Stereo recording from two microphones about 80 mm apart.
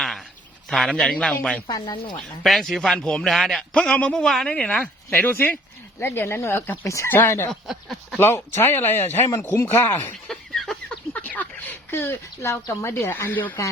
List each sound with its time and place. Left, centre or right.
0.9 s a woman's voice: centre
1.8 s speech: left
2.4 s a man's voice: centre
3.8 s a woman's voice: centre
5.1 s speech: left
7.7 s speech: centre
8.2 s speech: left
10.2 s a sound: centre
11.1 s speech: left